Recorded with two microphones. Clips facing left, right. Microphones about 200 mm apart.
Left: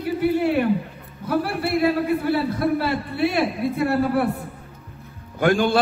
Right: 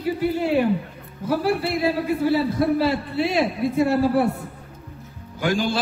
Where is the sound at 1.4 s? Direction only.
60° left (ahead or behind).